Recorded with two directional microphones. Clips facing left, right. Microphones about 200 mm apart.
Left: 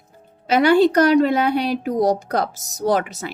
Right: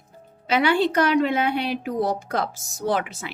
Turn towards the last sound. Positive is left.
turn(degrees=40)  # may be behind; listen again after turning